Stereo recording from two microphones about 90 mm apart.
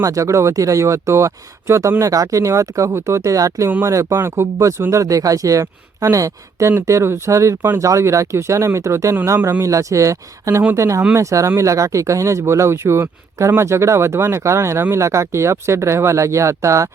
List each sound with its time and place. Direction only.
0.0 s speech: 35° right (ahead or behind)
3.2 s speech: 40° right (ahead or behind)
4.1 s speech: 25° right (ahead or behind)